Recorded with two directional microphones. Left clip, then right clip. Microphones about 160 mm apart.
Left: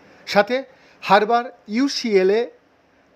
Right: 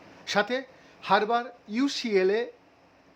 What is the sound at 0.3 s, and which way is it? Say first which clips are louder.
Speech: left 8 dB; 20° left (ahead or behind).